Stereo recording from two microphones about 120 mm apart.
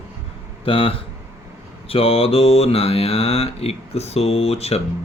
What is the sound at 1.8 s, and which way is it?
Mantra, 50° left (ahead or behind).